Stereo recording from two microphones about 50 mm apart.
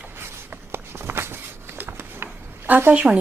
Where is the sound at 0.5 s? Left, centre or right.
Right.